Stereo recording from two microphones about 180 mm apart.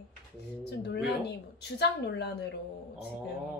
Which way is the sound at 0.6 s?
70° left (ahead or behind).